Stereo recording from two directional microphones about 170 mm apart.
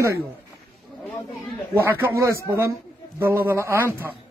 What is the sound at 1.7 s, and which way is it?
Speech, 15° right (ahead or behind).